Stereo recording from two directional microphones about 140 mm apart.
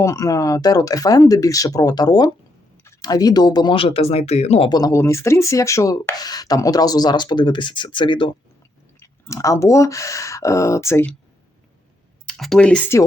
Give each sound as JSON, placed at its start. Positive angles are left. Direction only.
{"t": 0.0, "sound": "speech", "side_deg": 25}
{"t": 4.7, "sound": "speech", "side_deg": 25}
{"t": 9.0, "sound": "speech", "side_deg": 20}
{"t": 12.3, "sound": "speech", "side_deg": 5}